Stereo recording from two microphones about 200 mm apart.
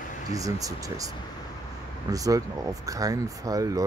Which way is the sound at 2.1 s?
15° right (ahead or behind).